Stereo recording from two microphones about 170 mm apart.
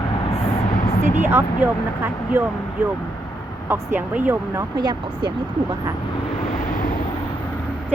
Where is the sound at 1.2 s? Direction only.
10° right (ahead or behind).